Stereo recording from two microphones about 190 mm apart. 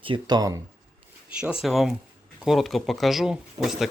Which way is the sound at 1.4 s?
5° right (ahead or behind).